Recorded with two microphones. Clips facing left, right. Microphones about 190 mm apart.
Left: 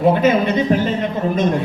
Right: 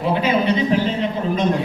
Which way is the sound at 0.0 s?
50° left (ahead or behind).